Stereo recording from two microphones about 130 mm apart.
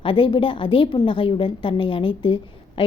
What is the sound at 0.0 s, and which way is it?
A woman's voice, 40° left (ahead or behind).